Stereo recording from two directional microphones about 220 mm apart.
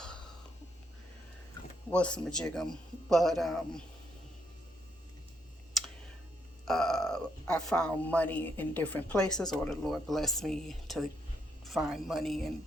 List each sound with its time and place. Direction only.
1.9 s speech: 5° left (ahead or behind)
6.7 s speech: centre (ahead or behind)
9.2 s speech: 20° left (ahead or behind)
9.5 s speech: centre (ahead or behind)